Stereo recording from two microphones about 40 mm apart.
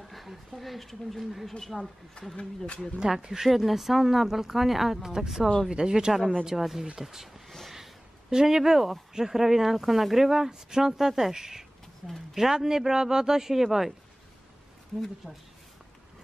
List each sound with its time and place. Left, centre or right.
0.0 s speech: centre
2.3 s speech: left
3.0 s speech: centre
6.4 s speech: centre
12.4 s speech: centre
15.2 s speech: right